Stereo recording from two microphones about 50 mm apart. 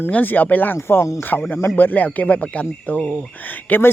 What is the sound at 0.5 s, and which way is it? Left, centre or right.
Speech, left.